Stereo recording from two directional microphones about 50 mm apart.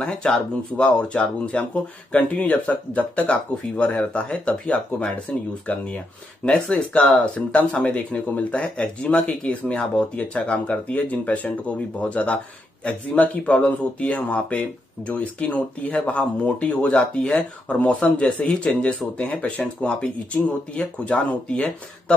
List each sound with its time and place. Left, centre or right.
0.0 s speech: centre
6.4 s speech: centre
7.1 s speech: left
18.5 s speech: centre
19.1 s speech: left